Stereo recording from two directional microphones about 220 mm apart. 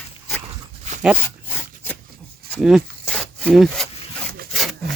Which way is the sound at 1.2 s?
10° left (ahead or behind).